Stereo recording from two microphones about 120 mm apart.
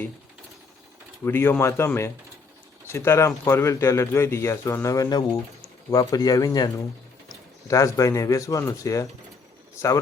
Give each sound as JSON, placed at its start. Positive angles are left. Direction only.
{"t": 1.2, "sound": "speech", "side_deg": 20}